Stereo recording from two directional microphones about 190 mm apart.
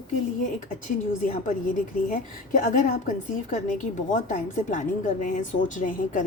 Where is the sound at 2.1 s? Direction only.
45° left (ahead or behind).